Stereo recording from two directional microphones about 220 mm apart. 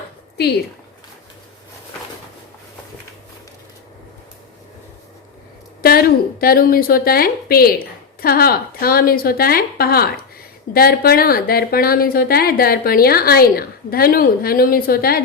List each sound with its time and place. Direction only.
5.8 s a woman's voice: 45° left (ahead or behind)